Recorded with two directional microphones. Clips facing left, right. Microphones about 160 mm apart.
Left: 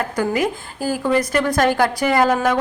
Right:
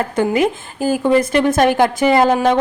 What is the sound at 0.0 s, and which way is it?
Speech, 25° right (ahead or behind).